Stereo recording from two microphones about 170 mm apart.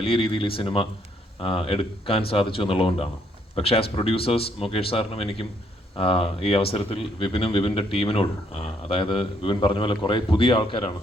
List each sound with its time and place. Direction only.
0.0 s speech: 35° left (ahead or behind)